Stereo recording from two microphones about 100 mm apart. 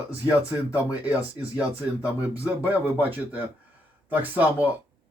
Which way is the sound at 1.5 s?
15° right (ahead or behind).